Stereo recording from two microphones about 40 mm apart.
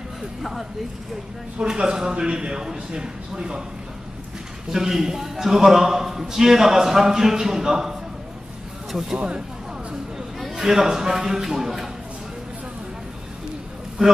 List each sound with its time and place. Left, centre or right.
0.4 s speech: centre
1.6 s a man's voice: right
4.6 s a man's voice: centre
8.9 s a man's voice: centre
10.5 s a man's voice: centre